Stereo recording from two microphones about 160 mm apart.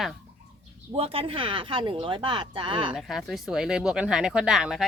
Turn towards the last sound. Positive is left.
turn(degrees=0)  # may be behind; listen again after turning